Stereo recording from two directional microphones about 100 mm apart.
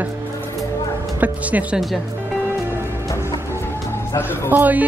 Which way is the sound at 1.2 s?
15° right (ahead or behind).